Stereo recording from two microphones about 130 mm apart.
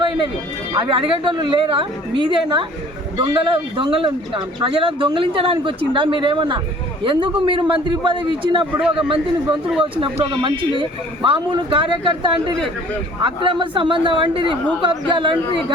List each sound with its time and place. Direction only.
0.7 s speech: 40° right (ahead or behind)
9.6 s speech: 5° right (ahead or behind)
10.0 s speech: 40° right (ahead or behind)